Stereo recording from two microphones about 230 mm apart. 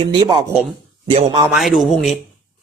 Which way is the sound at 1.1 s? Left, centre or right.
Right.